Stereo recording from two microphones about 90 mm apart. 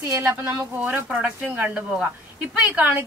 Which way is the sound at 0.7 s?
20° right (ahead or behind).